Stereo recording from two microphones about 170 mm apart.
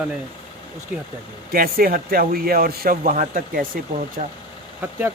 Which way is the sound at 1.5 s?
60° right (ahead or behind).